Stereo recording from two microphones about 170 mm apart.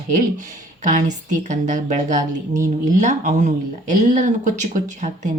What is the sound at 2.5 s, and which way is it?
Speech, 20° right (ahead or behind).